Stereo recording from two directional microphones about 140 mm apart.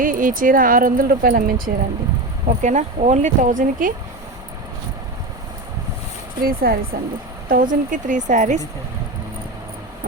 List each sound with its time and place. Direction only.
0.0 s speech: 75° right (ahead or behind)
2.5 s speech: 60° right (ahead or behind); by 3.9 s 75° right (ahead or behind)
6.4 s speech: 90° right; by 8.6 s 60° right (ahead or behind)